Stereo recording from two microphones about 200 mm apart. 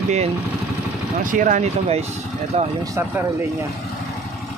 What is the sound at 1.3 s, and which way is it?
Speech, 40° right (ahead or behind).